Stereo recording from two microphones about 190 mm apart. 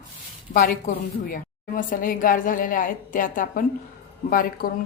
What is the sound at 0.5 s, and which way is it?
A woman's voice, 45° left (ahead or behind).